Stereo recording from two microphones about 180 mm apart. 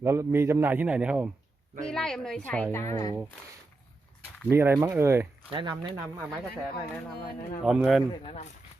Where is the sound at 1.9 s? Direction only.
5° left (ahead or behind).